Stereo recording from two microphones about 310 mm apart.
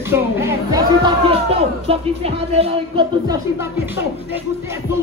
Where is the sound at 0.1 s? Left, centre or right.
Centre.